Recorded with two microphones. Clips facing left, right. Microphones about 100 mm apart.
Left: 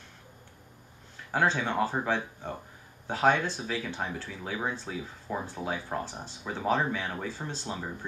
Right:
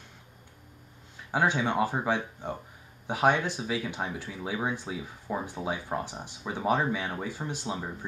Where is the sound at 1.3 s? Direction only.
15° right (ahead or behind).